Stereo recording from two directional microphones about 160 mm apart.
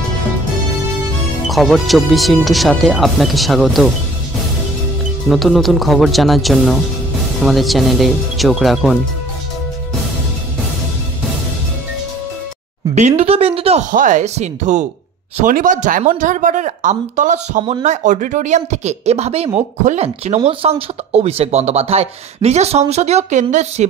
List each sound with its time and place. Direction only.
1.5 s speech: centre (ahead or behind)
5.3 s speech: centre (ahead or behind)
12.9 s speech: 45° right (ahead or behind)
13.9 s speech: 50° right (ahead or behind)